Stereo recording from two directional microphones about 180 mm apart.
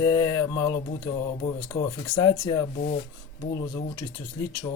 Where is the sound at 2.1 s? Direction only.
25° left (ahead or behind).